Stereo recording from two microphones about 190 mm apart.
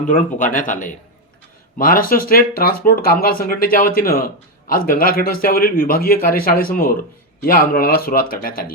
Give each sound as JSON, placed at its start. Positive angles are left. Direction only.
{"t": 0.1, "sound": "speech", "side_deg": 45}